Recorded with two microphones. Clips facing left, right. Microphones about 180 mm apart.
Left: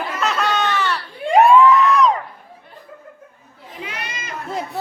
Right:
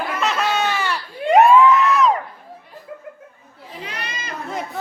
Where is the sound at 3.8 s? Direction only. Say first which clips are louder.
Left 1 dB; 35° right (ahead or behind).